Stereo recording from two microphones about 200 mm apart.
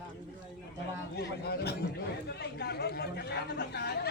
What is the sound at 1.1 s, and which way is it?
A man's voice, 55° left (ahead or behind).